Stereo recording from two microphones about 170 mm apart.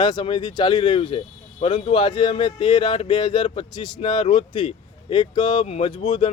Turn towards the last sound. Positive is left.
turn(degrees=30)  # may be behind; listen again after turning